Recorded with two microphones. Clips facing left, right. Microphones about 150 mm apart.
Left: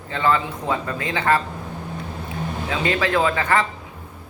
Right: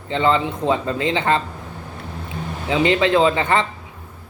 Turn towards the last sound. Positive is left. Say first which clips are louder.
# right 3 dB
turn(degrees=-25)  # may be behind; listen again after turning